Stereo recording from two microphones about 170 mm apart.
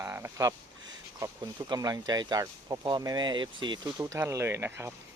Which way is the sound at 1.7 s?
25° right (ahead or behind).